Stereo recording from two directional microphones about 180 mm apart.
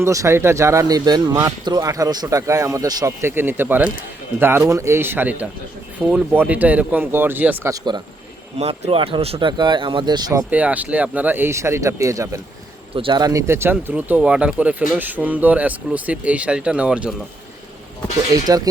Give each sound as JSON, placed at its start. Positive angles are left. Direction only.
{"t": 0.0, "sound": "speech", "side_deg": -15}
{"t": 8.5, "sound": "speech", "side_deg": -35}
{"t": 10.5, "sound": "speech", "side_deg": -10}
{"t": 12.9, "sound": "speech", "side_deg": -30}
{"t": 18.4, "sound": "speech", "side_deg": -20}